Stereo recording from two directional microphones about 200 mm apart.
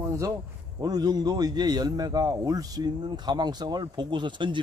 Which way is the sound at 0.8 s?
20° right (ahead or behind).